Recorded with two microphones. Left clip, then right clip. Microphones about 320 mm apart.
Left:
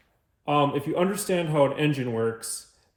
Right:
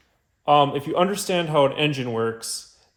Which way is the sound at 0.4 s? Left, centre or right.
Centre.